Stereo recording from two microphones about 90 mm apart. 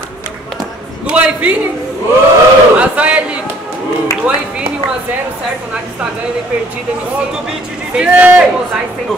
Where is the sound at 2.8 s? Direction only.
15° right (ahead or behind).